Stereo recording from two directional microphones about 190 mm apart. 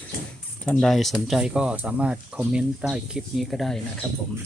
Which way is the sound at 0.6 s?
5° left (ahead or behind).